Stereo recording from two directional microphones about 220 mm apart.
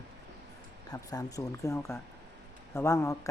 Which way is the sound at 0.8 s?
15° left (ahead or behind).